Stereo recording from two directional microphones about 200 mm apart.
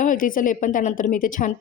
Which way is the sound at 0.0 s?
40° left (ahead or behind).